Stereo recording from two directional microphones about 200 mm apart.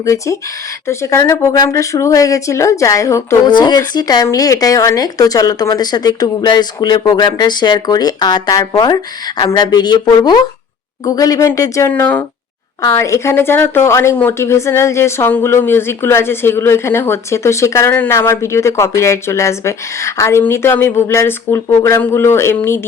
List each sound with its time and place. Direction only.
0.0 s speech: 15° left (ahead or behind)